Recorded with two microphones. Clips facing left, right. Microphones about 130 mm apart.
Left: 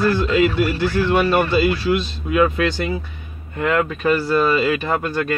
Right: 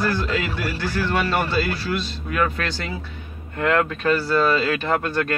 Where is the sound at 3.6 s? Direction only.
5° left (ahead or behind).